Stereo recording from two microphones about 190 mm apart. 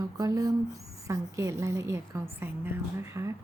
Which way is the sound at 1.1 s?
15° right (ahead or behind).